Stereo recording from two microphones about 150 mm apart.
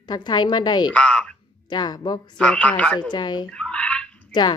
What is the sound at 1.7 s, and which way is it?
Speech, 30° left (ahead or behind).